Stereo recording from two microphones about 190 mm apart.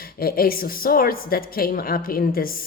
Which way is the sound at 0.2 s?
50° left (ahead or behind).